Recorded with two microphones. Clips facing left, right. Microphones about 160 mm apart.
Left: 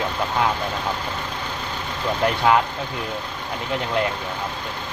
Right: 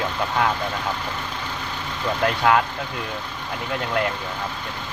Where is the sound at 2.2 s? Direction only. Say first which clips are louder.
Left 1 dB; 15° left (ahead or behind).